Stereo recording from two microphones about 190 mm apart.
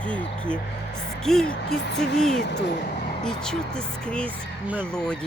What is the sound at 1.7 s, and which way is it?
Speech, 65° left (ahead or behind).